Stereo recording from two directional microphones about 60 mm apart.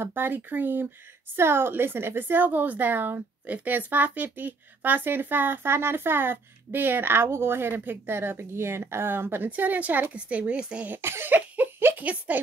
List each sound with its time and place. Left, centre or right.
0.0 s speech: right
9.5 s speech: right
10.9 s speech: right